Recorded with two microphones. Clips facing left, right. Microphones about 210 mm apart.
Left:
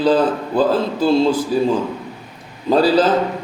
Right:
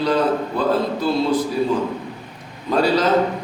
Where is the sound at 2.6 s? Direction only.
30° left (ahead or behind).